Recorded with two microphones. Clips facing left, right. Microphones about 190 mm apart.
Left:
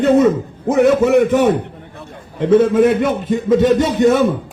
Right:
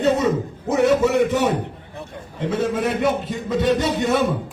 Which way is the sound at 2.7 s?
50° left (ahead or behind).